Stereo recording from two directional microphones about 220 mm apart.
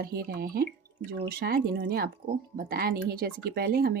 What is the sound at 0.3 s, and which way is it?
Speech, 40° right (ahead or behind).